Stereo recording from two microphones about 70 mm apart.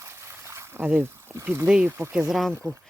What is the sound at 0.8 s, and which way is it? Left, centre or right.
Speech, right.